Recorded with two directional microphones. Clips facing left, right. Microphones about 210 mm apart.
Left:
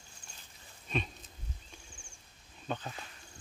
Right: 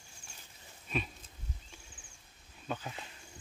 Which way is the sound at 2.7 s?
10° right (ahead or behind).